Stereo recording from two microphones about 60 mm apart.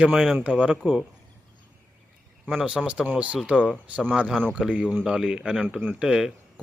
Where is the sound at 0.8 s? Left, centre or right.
Centre.